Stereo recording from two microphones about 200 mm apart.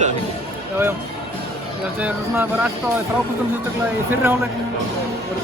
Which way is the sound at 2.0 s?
5° right (ahead or behind).